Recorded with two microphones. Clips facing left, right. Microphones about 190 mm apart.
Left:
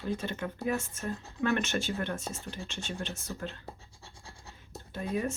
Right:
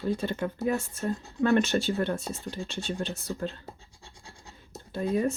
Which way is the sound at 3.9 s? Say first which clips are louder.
Right 1 dB; 15° right (ahead or behind).